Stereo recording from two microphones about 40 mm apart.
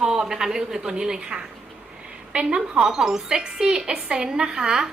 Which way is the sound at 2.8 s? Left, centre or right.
Centre.